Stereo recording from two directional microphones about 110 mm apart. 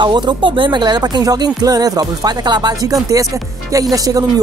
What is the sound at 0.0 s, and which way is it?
Speech, 45° right (ahead or behind).